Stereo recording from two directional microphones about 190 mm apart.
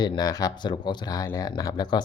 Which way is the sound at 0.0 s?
20° left (ahead or behind).